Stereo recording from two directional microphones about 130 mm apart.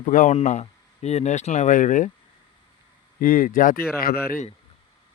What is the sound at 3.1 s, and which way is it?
Speech, 90° left.